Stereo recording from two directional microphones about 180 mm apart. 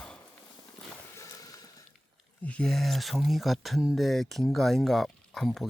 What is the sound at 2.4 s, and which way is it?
Speech, 5° left (ahead or behind).